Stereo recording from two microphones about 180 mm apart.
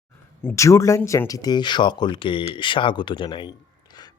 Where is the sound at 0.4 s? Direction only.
15° left (ahead or behind).